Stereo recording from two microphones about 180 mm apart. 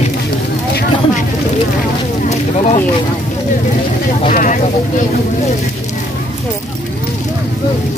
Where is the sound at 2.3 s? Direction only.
40° left (ahead or behind).